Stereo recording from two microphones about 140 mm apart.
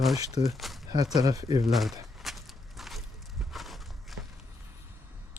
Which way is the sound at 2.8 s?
Centre (ahead or behind).